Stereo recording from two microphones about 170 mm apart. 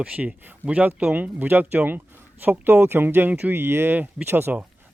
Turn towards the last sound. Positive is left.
turn(degrees=-10)  # may be behind; listen again after turning